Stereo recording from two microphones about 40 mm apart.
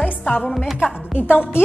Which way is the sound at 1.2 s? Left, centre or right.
Left.